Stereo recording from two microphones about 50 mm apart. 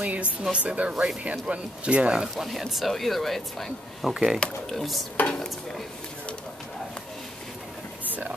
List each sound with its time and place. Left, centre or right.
0.0 s speech: right
2.3 s speech: centre
4.1 s speech: centre
4.6 s speech: centre
5.1 s dishes: left